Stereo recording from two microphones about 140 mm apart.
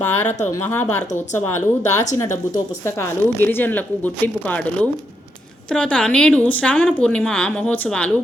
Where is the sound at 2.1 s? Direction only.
20° left (ahead or behind).